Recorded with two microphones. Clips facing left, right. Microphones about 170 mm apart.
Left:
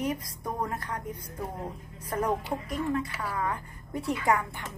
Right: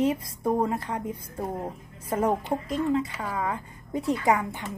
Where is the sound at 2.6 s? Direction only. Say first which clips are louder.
Right 4 dB; 25° right (ahead or behind).